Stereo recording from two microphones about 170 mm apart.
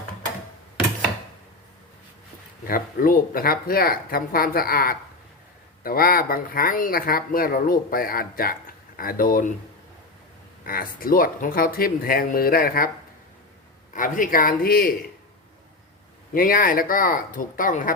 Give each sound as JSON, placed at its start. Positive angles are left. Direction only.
{"t": 2.6, "sound": "speech", "side_deg": 55}
{"t": 10.7, "sound": "speech", "side_deg": 60}
{"t": 13.9, "sound": "speech", "side_deg": 50}
{"t": 16.3, "sound": "speech", "side_deg": 55}